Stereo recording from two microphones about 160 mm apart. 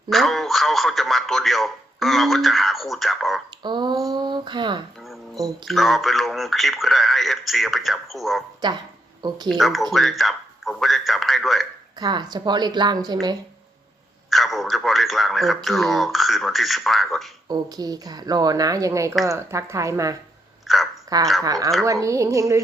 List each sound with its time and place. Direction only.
0.1 s speech: centre (ahead or behind)
3.6 s speech: 30° right (ahead or behind)
5.0 s music: centre (ahead or behind)
5.6 s speech: centre (ahead or behind)
9.5 s speech: centre (ahead or behind)
11.9 s speech: 25° right (ahead or behind)
14.3 s speech: centre (ahead or behind)
17.5 s speech: 25° right (ahead or behind)
20.7 s speech: centre (ahead or behind)
21.1 s speech: 25° right (ahead or behind)